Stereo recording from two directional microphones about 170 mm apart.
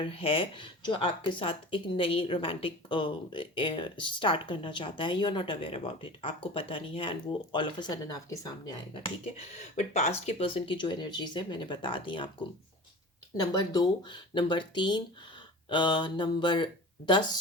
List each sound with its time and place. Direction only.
0.0 s speech: 30° left (ahead or behind)
9.2 s speech: 40° left (ahead or behind); by 17.3 s 25° left (ahead or behind)